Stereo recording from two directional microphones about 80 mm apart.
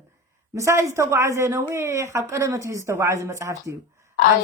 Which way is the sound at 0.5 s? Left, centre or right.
Right.